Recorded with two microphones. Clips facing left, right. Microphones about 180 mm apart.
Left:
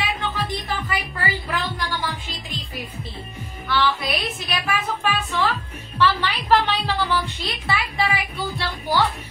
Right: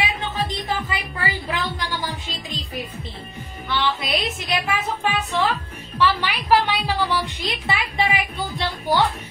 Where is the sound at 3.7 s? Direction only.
20° right (ahead or behind).